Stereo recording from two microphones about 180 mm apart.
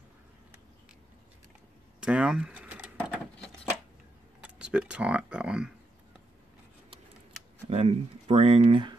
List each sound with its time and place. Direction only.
2.0 s a sound: 5° right (ahead or behind)
4.4 s speech: 5° right (ahead or behind)
7.7 s speech: 35° right (ahead or behind)